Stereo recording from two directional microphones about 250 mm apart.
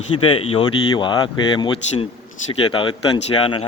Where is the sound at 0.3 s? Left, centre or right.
Left.